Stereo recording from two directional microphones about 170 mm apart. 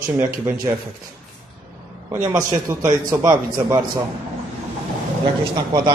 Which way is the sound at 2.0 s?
15° right (ahead or behind).